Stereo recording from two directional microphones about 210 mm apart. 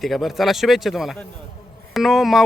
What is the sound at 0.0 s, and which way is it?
Speech, centre (ahead or behind).